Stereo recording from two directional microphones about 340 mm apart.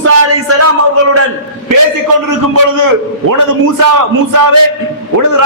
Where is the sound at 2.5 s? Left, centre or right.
Right.